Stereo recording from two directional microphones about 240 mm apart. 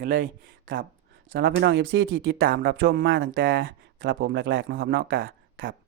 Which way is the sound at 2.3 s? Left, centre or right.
Right.